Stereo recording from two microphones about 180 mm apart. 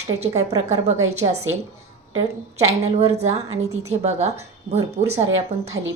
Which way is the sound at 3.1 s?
35° right (ahead or behind).